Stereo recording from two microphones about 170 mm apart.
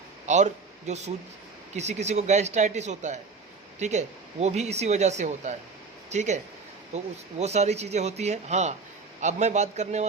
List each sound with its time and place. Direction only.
0.3 s a man's voice: 45° right (ahead or behind)